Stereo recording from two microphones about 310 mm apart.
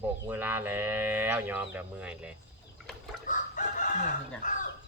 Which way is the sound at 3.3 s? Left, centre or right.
Left.